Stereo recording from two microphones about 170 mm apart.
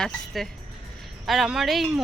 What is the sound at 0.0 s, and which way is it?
Speech, 5° left (ahead or behind).